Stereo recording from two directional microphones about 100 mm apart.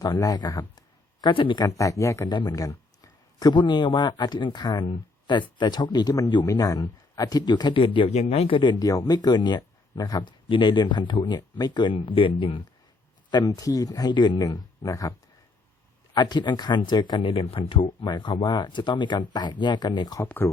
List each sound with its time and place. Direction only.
0.0 s speech: 40° left (ahead or behind)
1.3 s speech: 55° left (ahead or behind)
1.6 s speech: 35° left (ahead or behind)
2.3 s a man's voice: 45° left (ahead or behind); by 8.7 s 60° left (ahead or behind)
8.8 s a man's voice: 35° left (ahead or behind); by 12.6 s 55° left (ahead or behind)
13.3 s speech: 35° left (ahead or behind)
16.1 s a man's voice: 45° left (ahead or behind); by 17.7 s 65° left (ahead or behind)
18.0 s a man's voice: 50° left (ahead or behind)
20.2 s speech: 20° left (ahead or behind)